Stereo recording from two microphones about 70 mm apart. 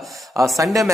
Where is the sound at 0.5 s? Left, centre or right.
Right.